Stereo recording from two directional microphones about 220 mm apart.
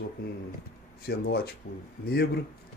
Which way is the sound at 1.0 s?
45° left (ahead or behind).